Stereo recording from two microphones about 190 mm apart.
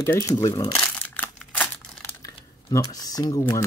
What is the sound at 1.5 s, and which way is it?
Crumpling, 10° left (ahead or behind).